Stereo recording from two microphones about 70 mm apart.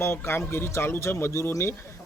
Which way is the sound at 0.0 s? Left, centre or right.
Left.